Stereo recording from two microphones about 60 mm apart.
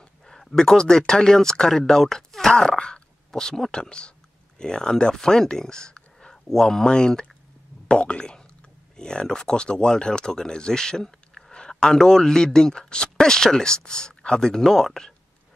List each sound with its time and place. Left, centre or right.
0.2 s speech: centre